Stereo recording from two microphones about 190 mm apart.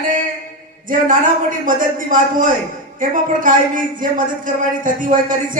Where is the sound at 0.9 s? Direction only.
45° right (ahead or behind).